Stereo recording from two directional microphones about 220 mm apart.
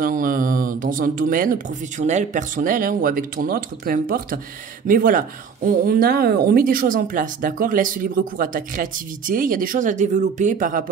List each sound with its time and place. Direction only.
0.0 s speech: 40° right (ahead or behind)